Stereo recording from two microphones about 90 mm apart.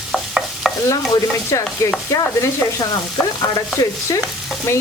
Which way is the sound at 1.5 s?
35° left (ahead or behind).